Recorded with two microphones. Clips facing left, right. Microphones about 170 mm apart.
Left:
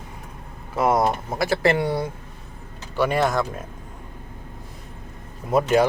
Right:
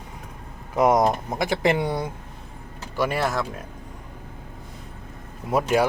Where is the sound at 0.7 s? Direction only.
20° right (ahead or behind).